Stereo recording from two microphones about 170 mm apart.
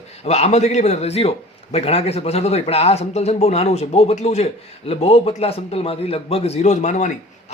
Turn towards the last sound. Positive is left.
turn(degrees=45)  # may be behind; listen again after turning